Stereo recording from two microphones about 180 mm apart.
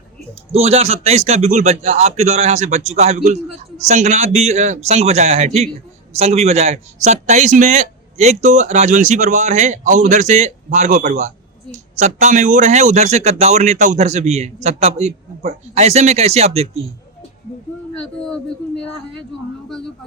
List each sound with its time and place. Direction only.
0.5 s a man's voice: 35° right (ahead or behind)
17.9 s speech: 5° left (ahead or behind)